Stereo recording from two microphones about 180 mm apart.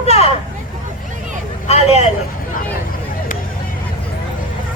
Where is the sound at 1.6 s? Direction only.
35° left (ahead or behind).